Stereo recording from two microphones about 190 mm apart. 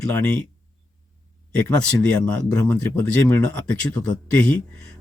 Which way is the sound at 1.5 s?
5° left (ahead or behind).